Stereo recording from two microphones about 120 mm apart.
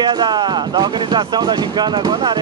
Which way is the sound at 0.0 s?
40° right (ahead or behind).